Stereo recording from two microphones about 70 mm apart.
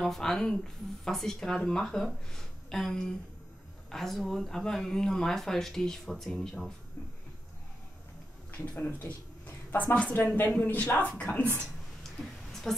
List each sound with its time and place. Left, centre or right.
0.0 s speech: centre
8.5 s a woman's voice: left
11.6 s a sound: centre